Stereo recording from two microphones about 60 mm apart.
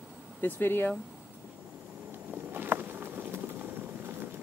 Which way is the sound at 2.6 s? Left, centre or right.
Right.